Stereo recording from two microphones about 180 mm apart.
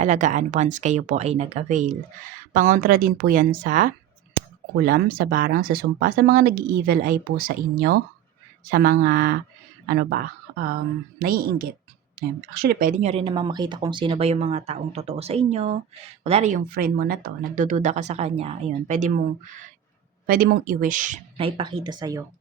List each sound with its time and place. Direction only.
0.0 s speech: 45° right (ahead or behind)
16.6 s speech: 55° right (ahead or behind)
20.2 s speech: 55° right (ahead or behind)
21.3 s speech: 30° right (ahead or behind)